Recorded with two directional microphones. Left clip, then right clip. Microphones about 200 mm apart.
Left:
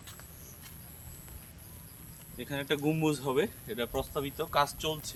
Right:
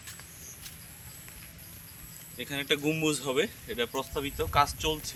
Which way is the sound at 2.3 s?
45° left (ahead or behind).